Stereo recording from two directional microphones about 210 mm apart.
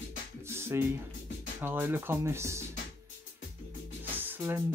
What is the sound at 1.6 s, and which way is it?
Speech, 10° right (ahead or behind).